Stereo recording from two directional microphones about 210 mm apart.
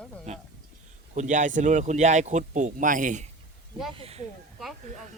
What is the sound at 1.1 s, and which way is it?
Speech, 35° right (ahead or behind).